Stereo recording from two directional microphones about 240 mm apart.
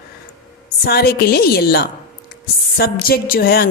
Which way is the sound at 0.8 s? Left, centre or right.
Left.